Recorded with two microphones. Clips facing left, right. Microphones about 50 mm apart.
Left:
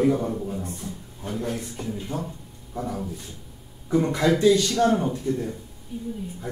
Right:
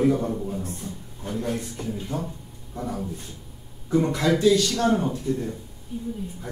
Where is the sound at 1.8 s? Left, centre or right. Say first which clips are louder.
Even; centre.